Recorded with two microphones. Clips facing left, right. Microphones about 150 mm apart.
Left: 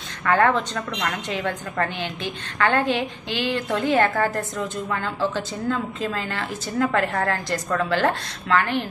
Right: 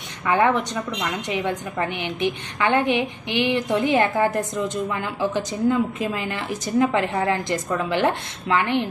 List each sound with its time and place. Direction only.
0.2 s a woman's voice: 15° right (ahead or behind)